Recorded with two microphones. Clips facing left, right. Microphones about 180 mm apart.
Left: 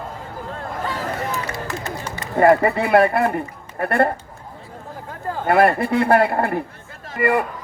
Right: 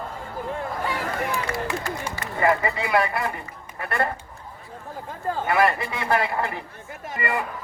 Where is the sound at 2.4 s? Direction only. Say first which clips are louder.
Left 8 dB; 55° left (ahead or behind).